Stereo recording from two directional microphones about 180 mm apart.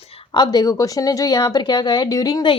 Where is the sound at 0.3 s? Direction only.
20° left (ahead or behind).